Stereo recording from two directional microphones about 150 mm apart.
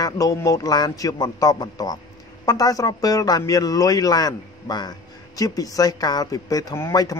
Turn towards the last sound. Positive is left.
turn(degrees=20)  # may be behind; listen again after turning